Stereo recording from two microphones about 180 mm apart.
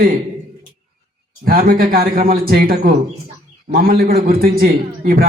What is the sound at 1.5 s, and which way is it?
A man's voice, 55° right (ahead or behind).